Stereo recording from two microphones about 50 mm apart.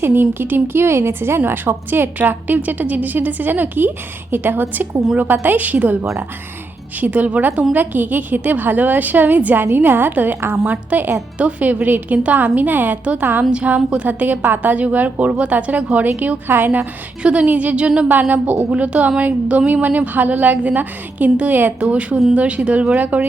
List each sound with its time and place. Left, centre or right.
0.0 s a woman's voice: right
1.5 s a woman's voice: right
13.5 s a woman's voice: right
14.1 s a woman's voice: right
17.2 s a woman's voice: right
18.1 s a woman's voice: right